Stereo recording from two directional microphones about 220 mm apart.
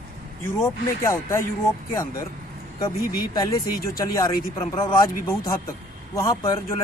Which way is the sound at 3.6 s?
40° left (ahead or behind).